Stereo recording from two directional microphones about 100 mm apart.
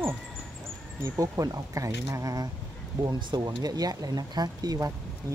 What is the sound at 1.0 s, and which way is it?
Speech, 30° right (ahead or behind).